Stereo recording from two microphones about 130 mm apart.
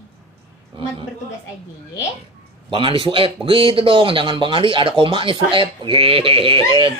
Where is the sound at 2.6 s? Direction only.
40° right (ahead or behind).